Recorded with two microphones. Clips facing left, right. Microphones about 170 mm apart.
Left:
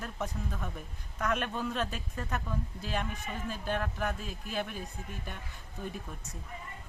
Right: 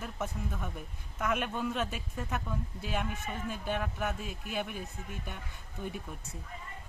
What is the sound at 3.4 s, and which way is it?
Speech, centre (ahead or behind).